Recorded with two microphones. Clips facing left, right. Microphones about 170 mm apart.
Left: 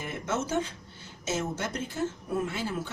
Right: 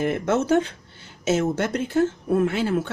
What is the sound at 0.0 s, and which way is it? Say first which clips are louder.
Speech: right 10 dB; 70° right (ahead or behind).